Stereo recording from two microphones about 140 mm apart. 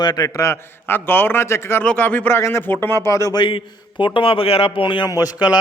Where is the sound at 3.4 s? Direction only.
35° left (ahead or behind).